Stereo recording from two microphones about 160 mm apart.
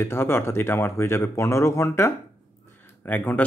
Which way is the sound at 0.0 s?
15° left (ahead or behind).